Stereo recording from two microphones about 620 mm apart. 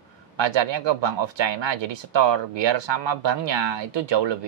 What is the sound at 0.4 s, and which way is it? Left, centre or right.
Speech, right.